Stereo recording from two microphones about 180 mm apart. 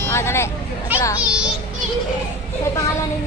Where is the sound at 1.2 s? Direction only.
5° right (ahead or behind).